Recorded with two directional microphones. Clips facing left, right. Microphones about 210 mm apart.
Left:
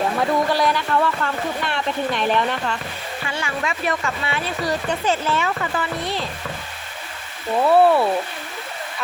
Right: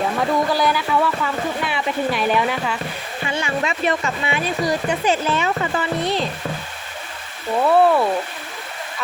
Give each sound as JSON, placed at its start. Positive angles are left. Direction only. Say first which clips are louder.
{"t": 0.2, "sound": "speech", "louder": "right 1 dB", "side_deg": 0}
{"t": 3.2, "sound": "speech", "louder": "right 4 dB", "side_deg": -20}
{"t": 7.6, "sound": "speech", "louder": "even", "side_deg": 5}